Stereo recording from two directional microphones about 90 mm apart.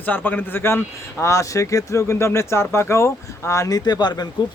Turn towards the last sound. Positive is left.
turn(degrees=45)  # may be behind; listen again after turning